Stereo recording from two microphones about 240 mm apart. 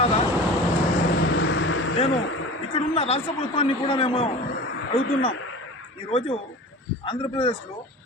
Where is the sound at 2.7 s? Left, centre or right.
Left.